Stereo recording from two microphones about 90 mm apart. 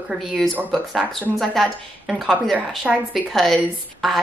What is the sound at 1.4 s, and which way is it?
Speech, centre (ahead or behind).